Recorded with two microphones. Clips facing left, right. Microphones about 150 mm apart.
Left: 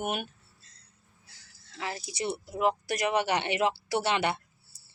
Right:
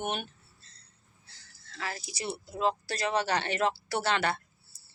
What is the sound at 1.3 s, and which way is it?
Speech, 20° left (ahead or behind).